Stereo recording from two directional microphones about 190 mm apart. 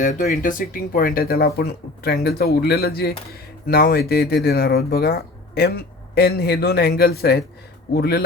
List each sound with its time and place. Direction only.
0.0 s speech: 40° left (ahead or behind)